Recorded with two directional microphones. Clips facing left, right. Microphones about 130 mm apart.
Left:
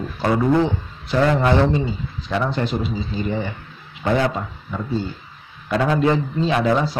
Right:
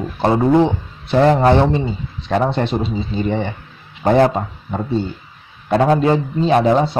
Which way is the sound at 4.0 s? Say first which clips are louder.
Right 6 dB; 40° right (ahead or behind).